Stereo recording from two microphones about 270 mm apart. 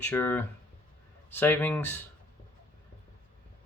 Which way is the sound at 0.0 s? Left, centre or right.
Centre.